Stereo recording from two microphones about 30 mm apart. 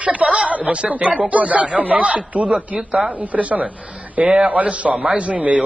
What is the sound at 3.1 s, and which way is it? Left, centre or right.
Speech, right.